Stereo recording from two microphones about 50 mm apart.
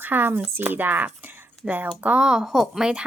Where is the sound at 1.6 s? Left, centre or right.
Centre.